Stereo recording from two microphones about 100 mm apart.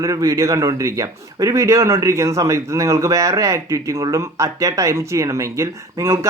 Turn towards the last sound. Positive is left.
turn(degrees=-30)  # may be behind; listen again after turning